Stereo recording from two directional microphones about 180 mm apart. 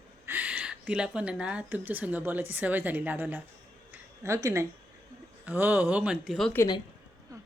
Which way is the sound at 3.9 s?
15° right (ahead or behind).